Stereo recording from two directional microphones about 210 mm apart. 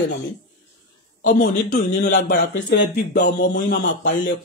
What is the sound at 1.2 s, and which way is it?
A man's voice, 50° left (ahead or behind).